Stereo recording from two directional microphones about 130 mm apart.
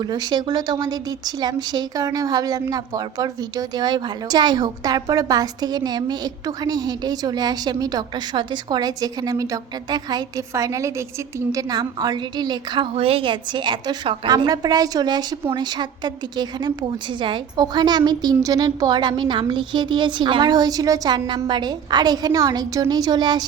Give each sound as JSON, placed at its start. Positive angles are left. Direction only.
{"t": 0.0, "sound": "a woman's voice", "side_deg": -35}
{"t": 12.9, "sound": "a woman's voice", "side_deg": -50}